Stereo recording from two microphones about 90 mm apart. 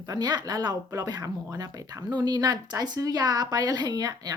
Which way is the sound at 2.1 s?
55° right (ahead or behind).